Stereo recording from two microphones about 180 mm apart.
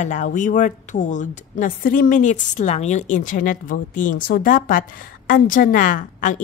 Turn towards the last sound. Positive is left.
turn(degrees=45)  # may be behind; listen again after turning